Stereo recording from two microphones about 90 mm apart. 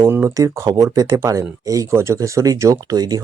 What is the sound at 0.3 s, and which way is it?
Speech, 35° right (ahead or behind).